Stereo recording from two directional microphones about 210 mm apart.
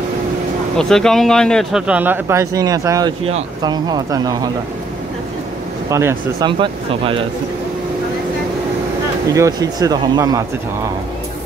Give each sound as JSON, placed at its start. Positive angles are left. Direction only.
{"t": 0.7, "sound": "speech", "side_deg": 0}
{"t": 5.9, "sound": "speech", "side_deg": -15}
{"t": 9.3, "sound": "speech", "side_deg": -15}